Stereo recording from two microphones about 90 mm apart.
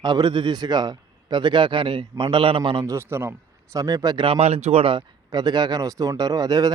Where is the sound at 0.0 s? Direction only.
50° right (ahead or behind); by 2.8 s 70° right (ahead or behind).